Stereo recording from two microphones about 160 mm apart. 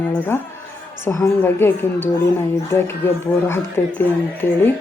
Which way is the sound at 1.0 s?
15° left (ahead or behind).